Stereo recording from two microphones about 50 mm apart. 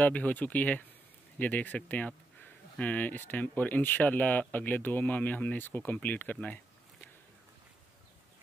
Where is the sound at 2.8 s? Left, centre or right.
Left.